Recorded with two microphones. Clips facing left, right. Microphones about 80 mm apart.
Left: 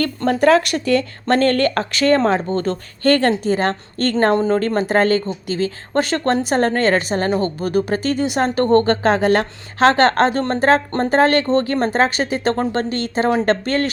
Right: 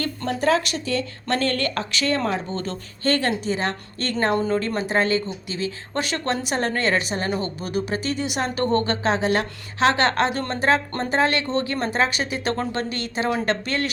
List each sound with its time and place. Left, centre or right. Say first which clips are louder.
0.3 s speech: left 7 dB; left
1.4 s speech: left 8 dB; left